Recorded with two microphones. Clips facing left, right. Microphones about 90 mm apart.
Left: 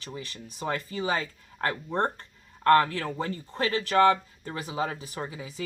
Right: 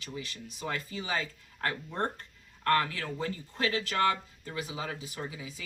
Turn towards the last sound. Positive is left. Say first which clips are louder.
# left 3 dB
turn(degrees=40)  # may be behind; listen again after turning